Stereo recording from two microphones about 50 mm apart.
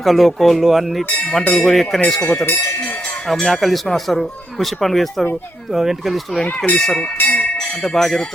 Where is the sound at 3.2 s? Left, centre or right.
Centre.